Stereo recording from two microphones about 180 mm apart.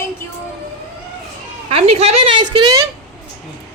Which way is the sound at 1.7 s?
35° right (ahead or behind).